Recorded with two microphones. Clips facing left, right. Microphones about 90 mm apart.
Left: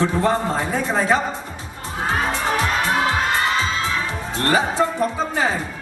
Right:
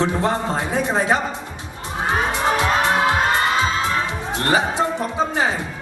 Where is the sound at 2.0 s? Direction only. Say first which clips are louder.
Right 2 dB; 20° right (ahead or behind).